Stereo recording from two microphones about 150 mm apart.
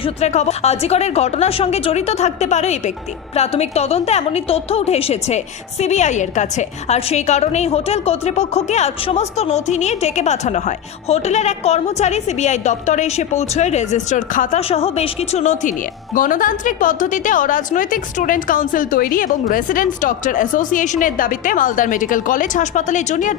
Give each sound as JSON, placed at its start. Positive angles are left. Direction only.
{"t": 0.0, "sound": "a woman's voice", "side_deg": 50}
{"t": 14.7, "sound": "a woman's voice", "side_deg": 40}
{"t": 16.1, "sound": "a woman's voice", "side_deg": 65}